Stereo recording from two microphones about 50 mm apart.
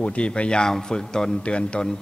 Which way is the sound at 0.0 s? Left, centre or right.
Left.